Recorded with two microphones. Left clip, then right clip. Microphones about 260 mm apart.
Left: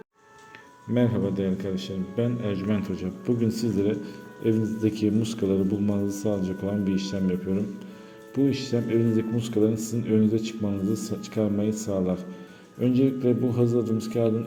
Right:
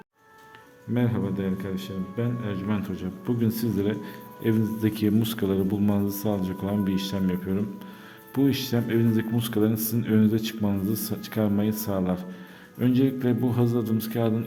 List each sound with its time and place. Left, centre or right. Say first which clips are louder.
0.9 s a man's voice: left 3 dB; centre